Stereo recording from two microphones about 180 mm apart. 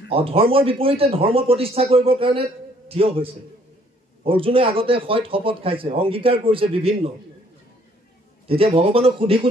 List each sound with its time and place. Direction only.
0.1 s speech: 30° right (ahead or behind)
8.5 s speech: 30° right (ahead or behind)